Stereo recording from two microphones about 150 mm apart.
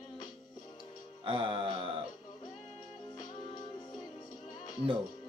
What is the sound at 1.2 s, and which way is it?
Music, 30° right (ahead or behind).